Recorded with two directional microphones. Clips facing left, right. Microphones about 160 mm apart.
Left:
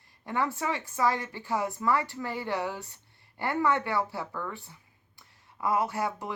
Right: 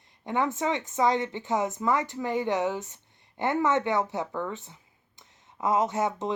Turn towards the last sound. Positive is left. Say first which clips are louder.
# right 4 dB
turn(degrees=-20)  # may be behind; listen again after turning